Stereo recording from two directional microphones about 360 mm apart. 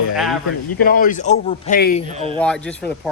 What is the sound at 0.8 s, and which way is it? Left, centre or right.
A man's voice, left.